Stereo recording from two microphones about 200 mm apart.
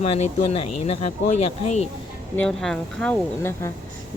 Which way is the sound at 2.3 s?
5° left (ahead or behind).